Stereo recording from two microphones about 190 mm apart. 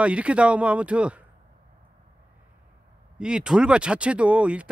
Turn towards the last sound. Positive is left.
turn(degrees=-5)  # may be behind; listen again after turning